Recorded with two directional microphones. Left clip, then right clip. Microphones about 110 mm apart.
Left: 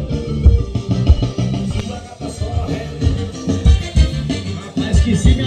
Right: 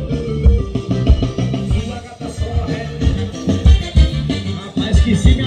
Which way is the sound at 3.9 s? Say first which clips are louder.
Right 1 dB; 60° left (ahead or behind).